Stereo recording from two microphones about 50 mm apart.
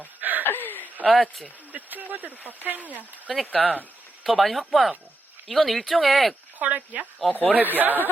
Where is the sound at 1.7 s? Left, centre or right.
Right.